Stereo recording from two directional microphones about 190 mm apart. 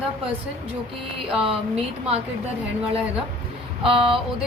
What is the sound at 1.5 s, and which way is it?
Speech, 30° right (ahead or behind).